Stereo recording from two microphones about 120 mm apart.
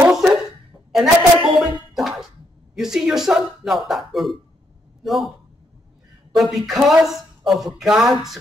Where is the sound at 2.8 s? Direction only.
5° right (ahead or behind).